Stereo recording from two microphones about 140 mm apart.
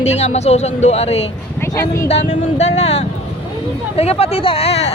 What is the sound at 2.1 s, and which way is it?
Speech, 50° left (ahead or behind).